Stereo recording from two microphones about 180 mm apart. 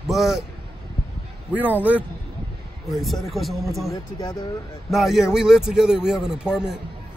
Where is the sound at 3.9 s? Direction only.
20° left (ahead or behind).